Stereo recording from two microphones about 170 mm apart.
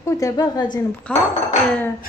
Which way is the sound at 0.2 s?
20° left (ahead or behind).